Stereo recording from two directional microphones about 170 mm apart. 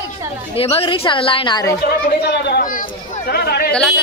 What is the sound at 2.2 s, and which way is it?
Speech, 75° left (ahead or behind).